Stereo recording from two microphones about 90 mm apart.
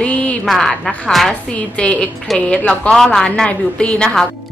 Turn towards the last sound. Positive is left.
turn(degrees=10)  # may be behind; listen again after turning